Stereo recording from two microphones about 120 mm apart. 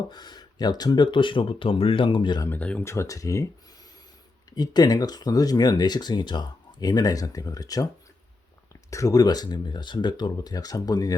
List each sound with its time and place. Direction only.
0.1 s speech: 35° left (ahead or behind)
2.5 s speech: 10° left (ahead or behind)
2.8 s speech: 25° left (ahead or behind)
4.5 s speech: 35° left (ahead or behind)